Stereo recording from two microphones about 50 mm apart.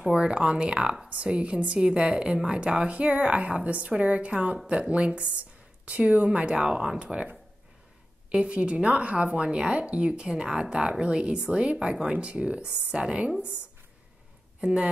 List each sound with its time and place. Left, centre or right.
0.0 s speech: centre
8.3 s speech: right
14.6 s speech: centre